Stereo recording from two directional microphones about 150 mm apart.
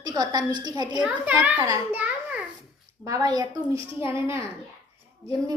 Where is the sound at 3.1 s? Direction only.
25° right (ahead or behind).